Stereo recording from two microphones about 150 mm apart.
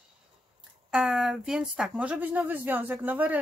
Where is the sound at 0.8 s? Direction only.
5° right (ahead or behind).